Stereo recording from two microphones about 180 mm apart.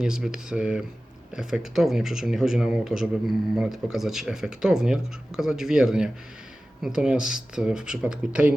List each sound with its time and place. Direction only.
0.0 s speech: 5° right (ahead or behind)